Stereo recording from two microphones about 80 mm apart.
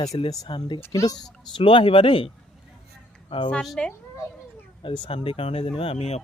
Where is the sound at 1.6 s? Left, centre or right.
Left.